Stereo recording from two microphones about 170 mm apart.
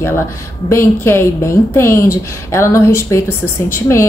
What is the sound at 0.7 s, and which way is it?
A woman's voice, 15° left (ahead or behind).